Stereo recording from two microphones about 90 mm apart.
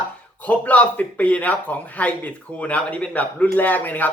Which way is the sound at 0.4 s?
15° left (ahead or behind).